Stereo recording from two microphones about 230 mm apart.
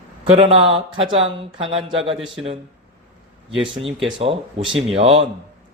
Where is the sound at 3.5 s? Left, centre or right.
Right.